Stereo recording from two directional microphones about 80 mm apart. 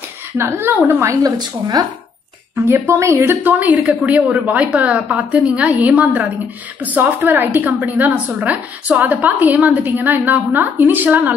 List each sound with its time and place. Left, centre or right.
0.4 s a woman's voice: right
1.4 s speech: right
2.5 s a woman's voice: right